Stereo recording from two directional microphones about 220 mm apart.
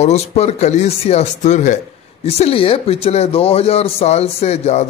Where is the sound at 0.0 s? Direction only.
30° left (ahead or behind).